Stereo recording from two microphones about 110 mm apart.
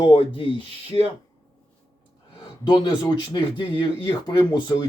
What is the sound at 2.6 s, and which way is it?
A man's voice, 40° left (ahead or behind).